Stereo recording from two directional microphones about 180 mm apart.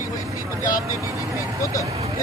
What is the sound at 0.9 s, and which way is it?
Vehicle, 15° right (ahead or behind).